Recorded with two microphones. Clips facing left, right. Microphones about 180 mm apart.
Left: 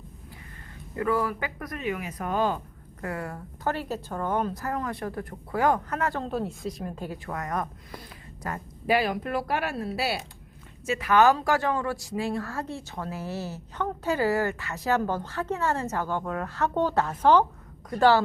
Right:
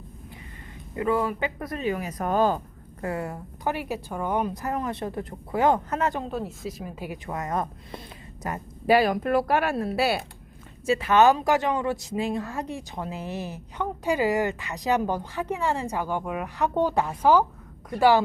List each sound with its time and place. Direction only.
0.9 s a woman's voice: 20° right (ahead or behind); by 2.6 s 40° right (ahead or behind)
3.0 s a woman's voice: 25° right (ahead or behind)
6.2 s a woman's voice: centre (ahead or behind); by 8.6 s 20° right (ahead or behind)
8.9 s speech: 40° right (ahead or behind)
10.8 s speech: 30° right (ahead or behind); by 18.2 s 10° right (ahead or behind)